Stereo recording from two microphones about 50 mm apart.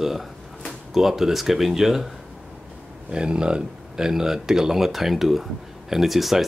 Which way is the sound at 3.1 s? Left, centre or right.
Centre.